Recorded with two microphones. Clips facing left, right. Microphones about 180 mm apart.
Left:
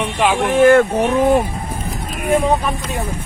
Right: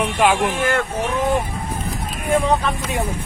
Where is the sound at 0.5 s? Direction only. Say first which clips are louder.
Left 11 dB; 50° left (ahead or behind).